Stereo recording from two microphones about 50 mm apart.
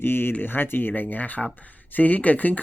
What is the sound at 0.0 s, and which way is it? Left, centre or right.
Speech, left.